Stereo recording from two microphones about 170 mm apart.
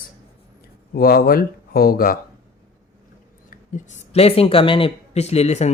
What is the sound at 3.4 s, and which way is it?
Speech, 45° left (ahead or behind).